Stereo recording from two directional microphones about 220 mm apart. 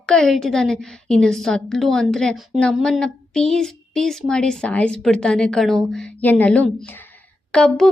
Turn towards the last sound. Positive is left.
turn(degrees=0)  # may be behind; listen again after turning